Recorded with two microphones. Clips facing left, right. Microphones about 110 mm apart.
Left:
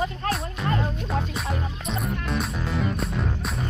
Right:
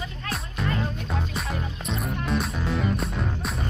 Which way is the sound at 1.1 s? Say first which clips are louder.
Left 2 dB; centre (ahead or behind).